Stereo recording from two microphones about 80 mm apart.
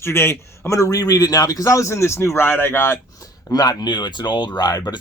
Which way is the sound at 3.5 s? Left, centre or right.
Left.